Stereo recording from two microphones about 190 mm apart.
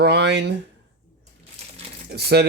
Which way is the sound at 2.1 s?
55° right (ahead or behind).